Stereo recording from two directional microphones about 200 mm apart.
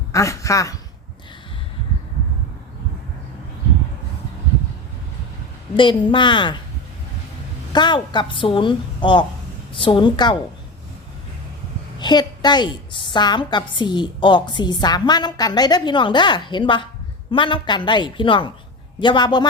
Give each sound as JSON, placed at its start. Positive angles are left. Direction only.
{"t": 0.1, "sound": "speech", "side_deg": 15}
{"t": 5.7, "sound": "a woman's voice", "side_deg": 25}
{"t": 7.7, "sound": "a woman's voice", "side_deg": 20}
{"t": 11.9, "sound": "a woman's voice", "side_deg": 20}